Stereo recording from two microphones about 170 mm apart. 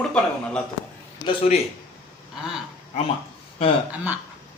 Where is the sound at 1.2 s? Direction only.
35° left (ahead or behind).